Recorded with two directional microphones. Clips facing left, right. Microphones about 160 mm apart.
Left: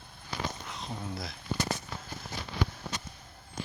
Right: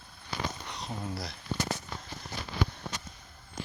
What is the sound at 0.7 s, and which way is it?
Speech, centre (ahead or behind).